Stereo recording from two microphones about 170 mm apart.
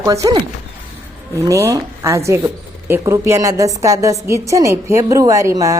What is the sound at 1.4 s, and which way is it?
A woman's voice, 20° right (ahead or behind).